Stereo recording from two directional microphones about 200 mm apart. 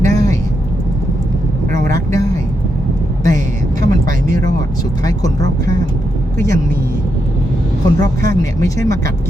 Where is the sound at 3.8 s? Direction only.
45° right (ahead or behind).